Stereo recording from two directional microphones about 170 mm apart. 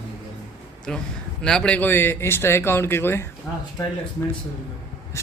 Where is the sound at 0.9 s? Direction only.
5° left (ahead or behind).